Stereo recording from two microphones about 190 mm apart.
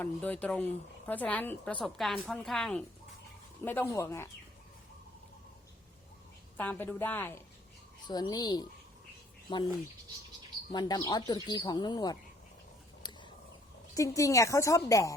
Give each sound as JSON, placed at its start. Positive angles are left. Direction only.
{"t": 0.0, "sound": "a woman's voice", "side_deg": 10}
{"t": 6.6, "sound": "a woman's voice", "side_deg": 10}
{"t": 10.7, "sound": "speech", "side_deg": 20}
{"t": 13.0, "sound": "a sound", "side_deg": 25}
{"t": 13.9, "sound": "a woman's voice", "side_deg": 15}